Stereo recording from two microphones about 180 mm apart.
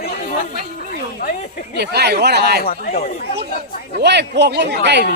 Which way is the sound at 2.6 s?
55° left (ahead or behind).